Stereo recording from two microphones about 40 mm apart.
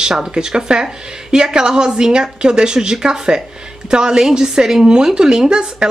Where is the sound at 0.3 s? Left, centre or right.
Centre.